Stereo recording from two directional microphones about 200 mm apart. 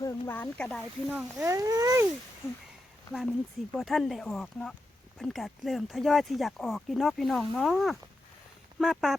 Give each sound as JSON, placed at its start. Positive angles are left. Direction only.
{"t": 0.0, "sound": "speech", "side_deg": 15}
{"t": 1.1, "sound": "speech", "side_deg": -10}
{"t": 2.4, "sound": "speech", "side_deg": 10}
{"t": 3.1, "sound": "speech", "side_deg": 0}